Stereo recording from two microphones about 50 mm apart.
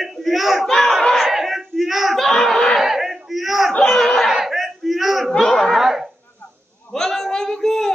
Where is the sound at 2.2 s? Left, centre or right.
Centre.